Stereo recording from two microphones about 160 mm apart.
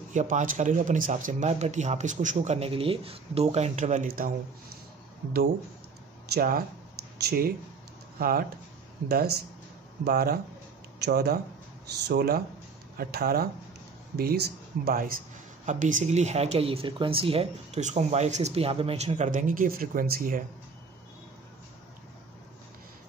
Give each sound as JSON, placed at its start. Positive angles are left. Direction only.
{"t": 0.1, "sound": "speech", "side_deg": -50}
{"t": 6.3, "sound": "speech", "side_deg": -65}
{"t": 9.1, "sound": "speech", "side_deg": -85}
{"t": 10.0, "sound": "speech", "side_deg": -70}
{"t": 14.1, "sound": "speech", "side_deg": -80}
{"t": 14.9, "sound": "speech", "side_deg": -65}
{"t": 15.6, "sound": "speech", "side_deg": -50}